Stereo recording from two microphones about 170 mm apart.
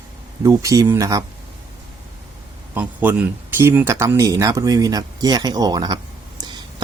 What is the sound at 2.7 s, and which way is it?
Speech, 10° right (ahead or behind).